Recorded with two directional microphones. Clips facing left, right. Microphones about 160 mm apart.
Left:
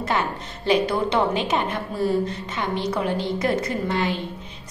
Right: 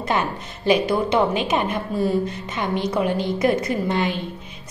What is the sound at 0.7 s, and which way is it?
A woman's voice, 10° right (ahead or behind).